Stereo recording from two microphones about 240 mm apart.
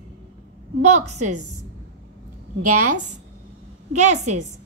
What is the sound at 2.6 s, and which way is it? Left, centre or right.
A woman's voice, right.